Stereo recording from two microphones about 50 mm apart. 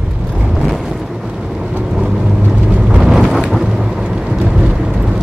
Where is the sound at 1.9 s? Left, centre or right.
Centre.